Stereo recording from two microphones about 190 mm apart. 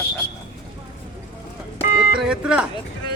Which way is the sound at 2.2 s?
5° right (ahead or behind).